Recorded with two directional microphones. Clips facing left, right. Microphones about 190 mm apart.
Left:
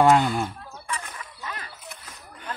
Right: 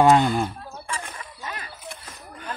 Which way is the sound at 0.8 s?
25° right (ahead or behind).